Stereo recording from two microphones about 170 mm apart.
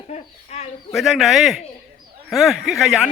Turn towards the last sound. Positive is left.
turn(degrees=0)  # may be behind; listen again after turning